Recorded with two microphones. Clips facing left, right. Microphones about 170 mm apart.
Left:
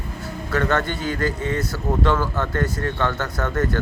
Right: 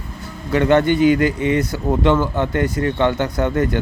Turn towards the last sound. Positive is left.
turn(degrees=-20)  # may be behind; listen again after turning